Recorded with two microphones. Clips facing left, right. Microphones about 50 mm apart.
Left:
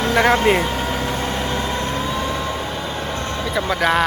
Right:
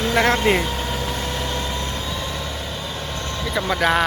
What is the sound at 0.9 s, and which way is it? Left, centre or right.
Vehicle, left.